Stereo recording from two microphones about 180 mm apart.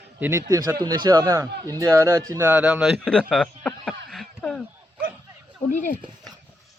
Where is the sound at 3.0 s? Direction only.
5° left (ahead or behind).